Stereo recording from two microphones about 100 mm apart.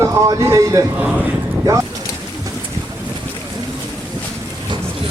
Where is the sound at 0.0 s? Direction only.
35° right (ahead or behind).